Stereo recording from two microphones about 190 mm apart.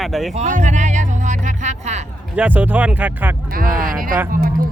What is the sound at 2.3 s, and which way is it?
Speech, 10° right (ahead or behind).